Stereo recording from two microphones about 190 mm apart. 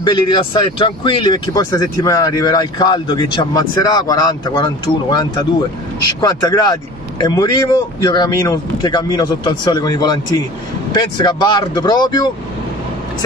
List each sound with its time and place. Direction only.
0.0 s speech: 25° left (ahead or behind)